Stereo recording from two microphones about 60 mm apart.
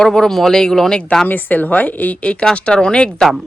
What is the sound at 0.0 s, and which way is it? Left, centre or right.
Speech, centre.